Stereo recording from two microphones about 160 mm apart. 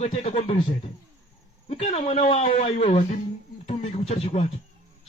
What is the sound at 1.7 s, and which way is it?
A man's voice, 40° left (ahead or behind).